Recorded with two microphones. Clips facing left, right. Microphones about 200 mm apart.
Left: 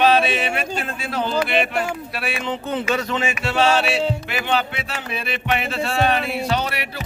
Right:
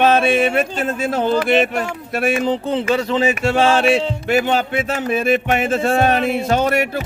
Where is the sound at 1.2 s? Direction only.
45° right (ahead or behind).